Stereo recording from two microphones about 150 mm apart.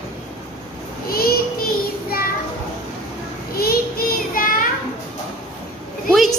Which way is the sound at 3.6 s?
85° left.